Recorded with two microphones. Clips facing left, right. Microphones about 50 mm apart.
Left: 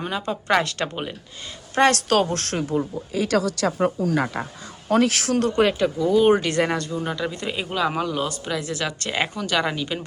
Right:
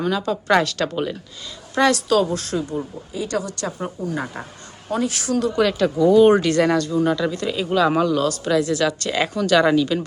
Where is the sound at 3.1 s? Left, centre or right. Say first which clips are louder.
Left 3 dB; left.